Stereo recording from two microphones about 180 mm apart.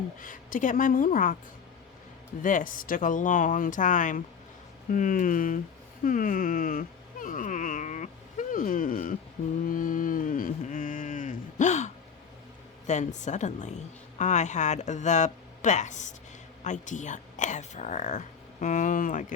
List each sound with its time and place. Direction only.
0.2 s speech: 50° left (ahead or behind)
2.4 s speech: 45° left (ahead or behind)
6.1 s a sound: 50° left (ahead or behind)
12.9 s speech: 40° left (ahead or behind)